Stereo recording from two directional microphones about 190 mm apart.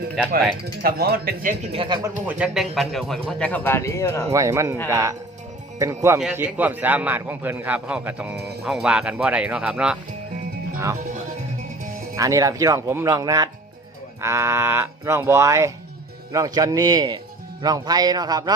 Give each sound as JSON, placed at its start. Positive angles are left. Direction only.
{"t": 0.8, "sound": "speech", "side_deg": -50}
{"t": 1.7, "sound": "a man's voice", "side_deg": -25}
{"t": 2.2, "sound": "speech", "side_deg": -5}
{"t": 4.3, "sound": "a man's voice", "side_deg": -15}
{"t": 6.1, "sound": "a man's voice", "side_deg": -5}
{"t": 12.1, "sound": "a man's voice", "side_deg": -15}